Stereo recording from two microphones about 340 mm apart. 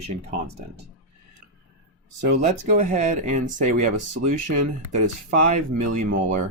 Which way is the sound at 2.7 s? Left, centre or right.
Right.